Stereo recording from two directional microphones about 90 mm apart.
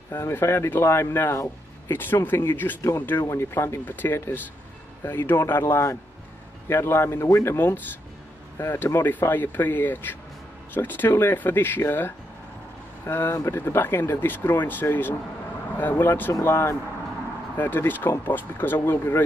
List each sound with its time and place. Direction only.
0.1 s speech: 25° left (ahead or behind)
7.5 s speech: 25° left (ahead or behind)